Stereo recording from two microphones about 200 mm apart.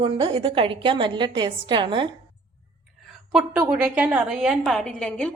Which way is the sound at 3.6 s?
5° right (ahead or behind).